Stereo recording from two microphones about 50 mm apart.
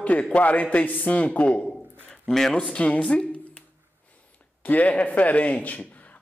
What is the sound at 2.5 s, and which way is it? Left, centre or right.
Speech, left.